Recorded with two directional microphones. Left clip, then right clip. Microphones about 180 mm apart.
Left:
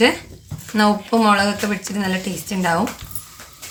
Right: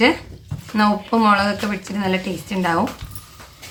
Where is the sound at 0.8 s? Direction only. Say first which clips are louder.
Left 1 dB; 20° left (ahead or behind).